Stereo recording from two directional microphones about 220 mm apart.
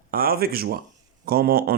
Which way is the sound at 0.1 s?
40° right (ahead or behind).